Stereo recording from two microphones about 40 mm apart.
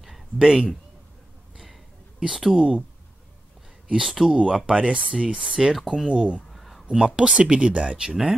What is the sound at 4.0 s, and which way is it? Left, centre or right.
Speech, centre.